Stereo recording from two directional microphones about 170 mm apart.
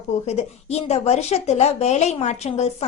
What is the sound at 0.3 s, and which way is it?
A woman's voice, 40° left (ahead or behind).